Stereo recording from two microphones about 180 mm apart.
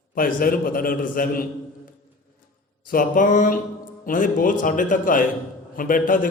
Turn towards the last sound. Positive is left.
turn(degrees=50)  # may be behind; listen again after turning